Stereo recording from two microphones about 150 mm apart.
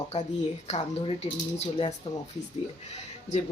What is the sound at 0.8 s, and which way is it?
Speech, 40° left (ahead or behind).